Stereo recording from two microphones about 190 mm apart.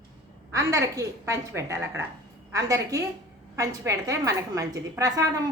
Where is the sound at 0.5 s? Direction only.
15° right (ahead or behind).